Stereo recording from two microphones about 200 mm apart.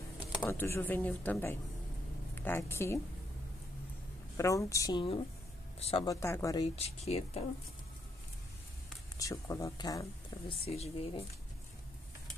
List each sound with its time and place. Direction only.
0.4 s a woman's voice: 10° left (ahead or behind)
4.4 s speech: 15° left (ahead or behind); by 6.0 s 30° left (ahead or behind)
6.0 s speech: 15° left (ahead or behind)
6.7 s speech: 30° left (ahead or behind)
9.2 s speech: 15° left (ahead or behind)
10.5 s speech: 30° left (ahead or behind)